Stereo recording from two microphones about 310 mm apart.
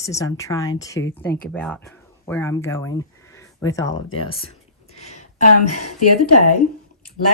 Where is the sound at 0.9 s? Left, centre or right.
Left.